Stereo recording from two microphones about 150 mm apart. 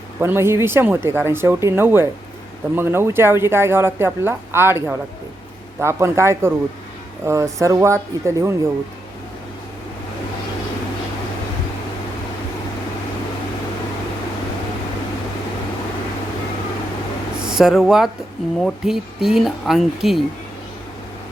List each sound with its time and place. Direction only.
0.2 s speech: 15° right (ahead or behind)
17.4 s speech: 5° right (ahead or behind)